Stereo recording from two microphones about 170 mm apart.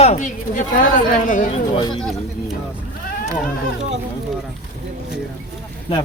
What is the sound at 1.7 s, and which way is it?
Speech, 25° left (ahead or behind).